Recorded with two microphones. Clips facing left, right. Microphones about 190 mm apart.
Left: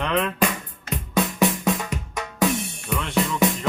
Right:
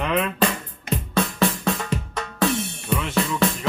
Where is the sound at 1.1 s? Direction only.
15° left (ahead or behind).